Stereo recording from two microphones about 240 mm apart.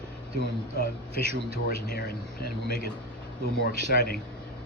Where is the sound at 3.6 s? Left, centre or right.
Left.